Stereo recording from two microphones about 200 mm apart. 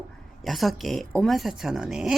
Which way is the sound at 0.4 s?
Centre (ahead or behind).